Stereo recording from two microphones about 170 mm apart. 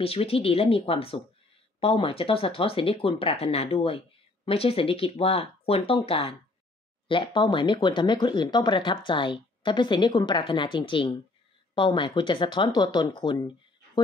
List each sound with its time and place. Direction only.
0.0 s speech: 35° left (ahead or behind)